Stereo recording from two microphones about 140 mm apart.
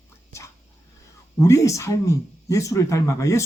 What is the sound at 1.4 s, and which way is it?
Speech, 20° left (ahead or behind).